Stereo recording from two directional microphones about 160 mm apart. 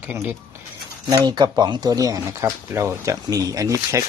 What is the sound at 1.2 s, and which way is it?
Speech, 25° right (ahead or behind).